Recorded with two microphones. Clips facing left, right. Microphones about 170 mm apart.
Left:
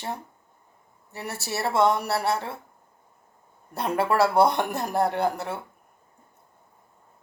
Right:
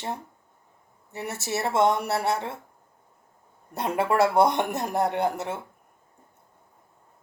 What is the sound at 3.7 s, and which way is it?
Speech, 20° right (ahead or behind).